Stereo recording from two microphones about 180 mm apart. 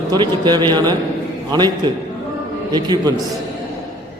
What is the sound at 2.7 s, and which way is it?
Speech, 25° right (ahead or behind).